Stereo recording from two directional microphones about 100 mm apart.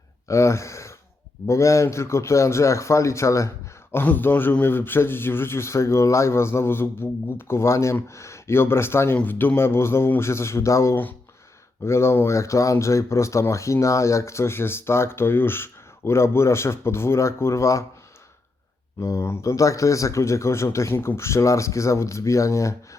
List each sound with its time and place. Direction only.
0.3 s speech: 30° left (ahead or behind)
3.9 s speech: 20° left (ahead or behind)
18.9 s speech: 30° left (ahead or behind)